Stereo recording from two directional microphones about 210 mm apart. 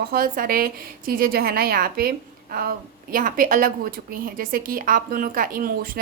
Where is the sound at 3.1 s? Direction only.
40° right (ahead or behind).